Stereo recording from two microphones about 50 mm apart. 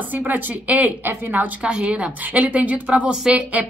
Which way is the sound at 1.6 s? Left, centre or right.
Centre.